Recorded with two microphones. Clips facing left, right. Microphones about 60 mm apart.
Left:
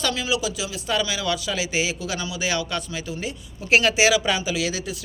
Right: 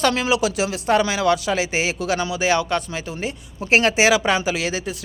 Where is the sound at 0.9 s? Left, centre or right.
Right.